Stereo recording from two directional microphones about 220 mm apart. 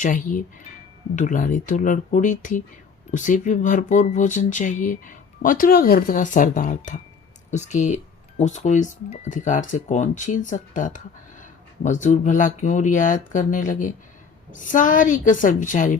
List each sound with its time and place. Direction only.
0.0 s speech: 35° left (ahead or behind)